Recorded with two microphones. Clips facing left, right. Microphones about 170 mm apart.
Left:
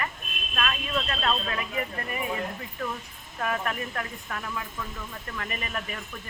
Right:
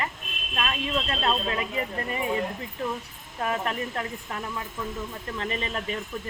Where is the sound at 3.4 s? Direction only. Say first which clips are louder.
Right 2 dB; 25° right (ahead or behind).